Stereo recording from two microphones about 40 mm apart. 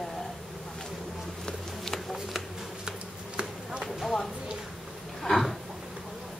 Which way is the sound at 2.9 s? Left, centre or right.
Centre.